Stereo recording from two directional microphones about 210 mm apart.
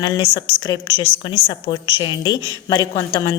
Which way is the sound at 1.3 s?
25° left (ahead or behind).